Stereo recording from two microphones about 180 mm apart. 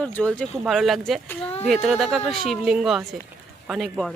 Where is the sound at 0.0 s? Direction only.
5° left (ahead or behind).